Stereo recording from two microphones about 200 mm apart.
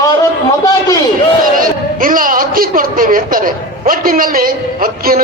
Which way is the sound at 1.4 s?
45° right (ahead or behind).